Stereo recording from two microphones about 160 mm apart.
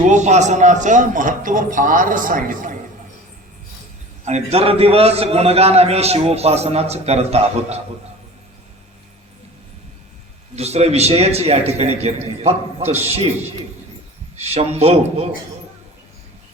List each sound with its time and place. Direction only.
0.1 s a man's voice: 45° right (ahead or behind)
4.3 s a man's voice: 40° right (ahead or behind)
10.5 s a man's voice: 40° right (ahead or behind)
14.3 s a man's voice: 40° right (ahead or behind)